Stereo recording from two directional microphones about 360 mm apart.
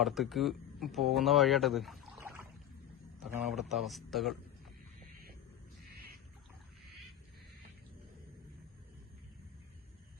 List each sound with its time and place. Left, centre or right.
0.0 s a man's voice: centre